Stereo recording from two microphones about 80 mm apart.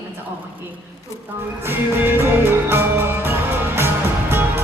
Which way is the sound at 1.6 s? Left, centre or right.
Right.